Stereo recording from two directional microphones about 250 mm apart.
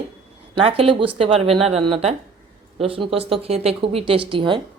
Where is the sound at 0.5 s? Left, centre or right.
Right.